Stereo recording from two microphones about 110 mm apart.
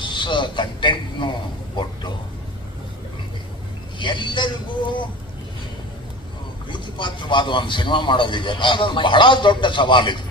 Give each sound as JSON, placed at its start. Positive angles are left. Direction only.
{"t": 0.0, "sound": "a man's voice", "side_deg": 45}
{"t": 4.0, "sound": "a man's voice", "side_deg": 45}
{"t": 6.7, "sound": "a man's voice", "side_deg": 45}